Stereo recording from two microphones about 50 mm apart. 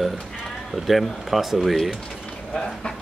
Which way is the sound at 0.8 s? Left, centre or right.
Centre.